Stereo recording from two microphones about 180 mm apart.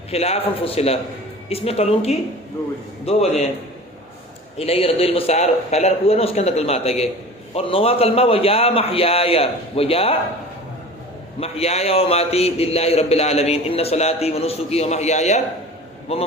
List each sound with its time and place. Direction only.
0.1 s a man's voice: 35° left (ahead or behind)
4.5 s a man's voice: 35° left (ahead or behind)
11.3 s a man's voice: 35° left (ahead or behind)